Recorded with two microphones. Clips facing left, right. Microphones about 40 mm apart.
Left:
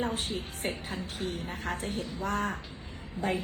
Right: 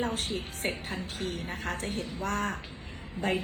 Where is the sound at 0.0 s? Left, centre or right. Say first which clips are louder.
Right 1 dB; right.